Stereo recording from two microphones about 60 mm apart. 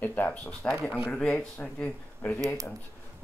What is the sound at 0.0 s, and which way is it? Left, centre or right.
Speech, left.